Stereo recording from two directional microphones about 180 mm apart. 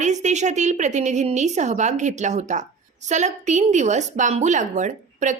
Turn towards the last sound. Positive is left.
turn(degrees=-45)  # may be behind; listen again after turning